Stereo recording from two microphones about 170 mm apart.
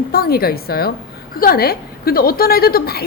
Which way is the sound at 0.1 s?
60° left (ahead or behind).